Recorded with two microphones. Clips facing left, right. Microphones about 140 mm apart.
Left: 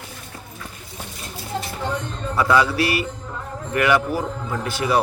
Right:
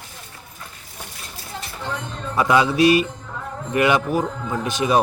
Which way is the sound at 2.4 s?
20° right (ahead or behind).